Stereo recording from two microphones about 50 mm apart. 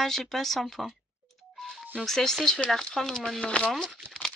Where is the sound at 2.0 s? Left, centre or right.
Centre.